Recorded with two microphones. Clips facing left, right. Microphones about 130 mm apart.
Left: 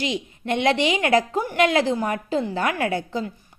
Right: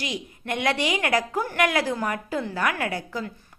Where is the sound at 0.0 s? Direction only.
25° left (ahead or behind).